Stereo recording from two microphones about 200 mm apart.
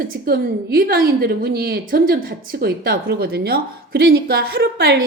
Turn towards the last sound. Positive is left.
turn(degrees=-55)  # may be behind; listen again after turning